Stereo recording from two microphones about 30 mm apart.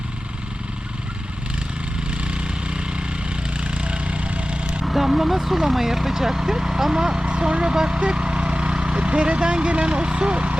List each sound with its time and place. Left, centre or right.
2.0 s a sound: right
4.6 s vehicle: right
4.9 s speech: centre
6.9 s speech: right